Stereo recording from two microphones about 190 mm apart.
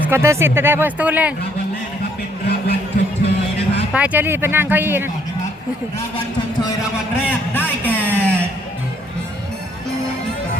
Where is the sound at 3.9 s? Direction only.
10° right (ahead or behind).